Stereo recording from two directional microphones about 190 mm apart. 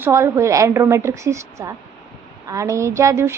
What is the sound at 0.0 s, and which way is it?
A woman's voice, 15° right (ahead or behind).